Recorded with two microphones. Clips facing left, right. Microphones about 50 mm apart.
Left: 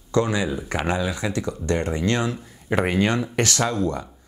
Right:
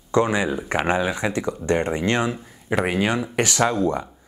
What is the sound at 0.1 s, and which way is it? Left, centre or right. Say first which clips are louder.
Speech: right 2 dB; right.